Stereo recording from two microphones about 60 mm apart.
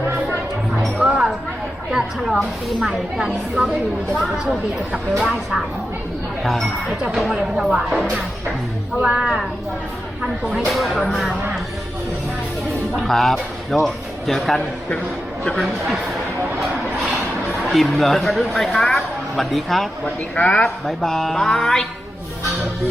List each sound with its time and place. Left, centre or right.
1.0 s music: centre
1.9 s speech: centre
5.2 s speech: centre
6.4 s speech: centre
7.2 s speech: centre
9.0 s speech: centre
10.7 s speech: centre
13.0 s speech: centre
17.6 s speech: centre
20.1 s speech: left
20.6 s speech: centre